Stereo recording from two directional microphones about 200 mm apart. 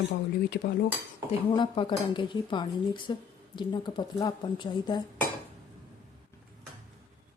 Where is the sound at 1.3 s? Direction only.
25° left (ahead or behind).